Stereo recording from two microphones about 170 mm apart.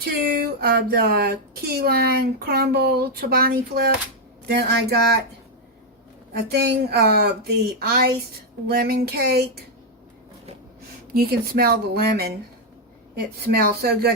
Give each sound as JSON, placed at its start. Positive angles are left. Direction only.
{"t": 0.0, "sound": "speech", "side_deg": -65}
{"t": 6.5, "sound": "speech", "side_deg": -70}
{"t": 11.1, "sound": "speech", "side_deg": -60}
{"t": 13.6, "sound": "speech", "side_deg": -65}